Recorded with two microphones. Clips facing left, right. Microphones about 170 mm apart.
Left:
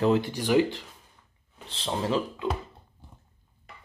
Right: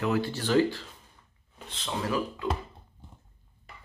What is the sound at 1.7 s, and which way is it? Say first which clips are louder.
Speech: left 3 dB; 30° left (ahead or behind).